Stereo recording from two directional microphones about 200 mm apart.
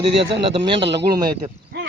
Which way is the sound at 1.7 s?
60° right (ahead or behind).